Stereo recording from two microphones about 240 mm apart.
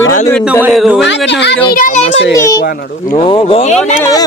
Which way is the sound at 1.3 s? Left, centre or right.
Left.